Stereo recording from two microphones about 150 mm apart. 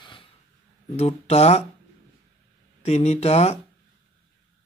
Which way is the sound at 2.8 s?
45° left (ahead or behind).